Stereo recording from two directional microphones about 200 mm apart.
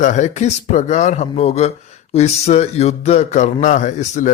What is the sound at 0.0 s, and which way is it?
Speech, 35° left (ahead or behind).